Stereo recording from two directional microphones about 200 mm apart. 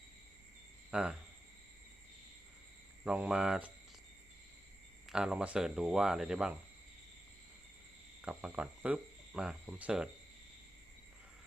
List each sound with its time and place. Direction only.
0.9 s speech: 5° right (ahead or behind)
3.0 s speech: 5° right (ahead or behind)
5.0 s speech: 5° right (ahead or behind)
8.2 s speech: 5° right (ahead or behind)